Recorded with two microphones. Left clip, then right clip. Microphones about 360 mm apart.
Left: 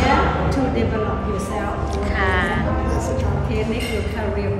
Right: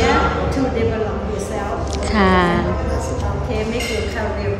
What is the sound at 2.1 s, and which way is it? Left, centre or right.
Music, centre.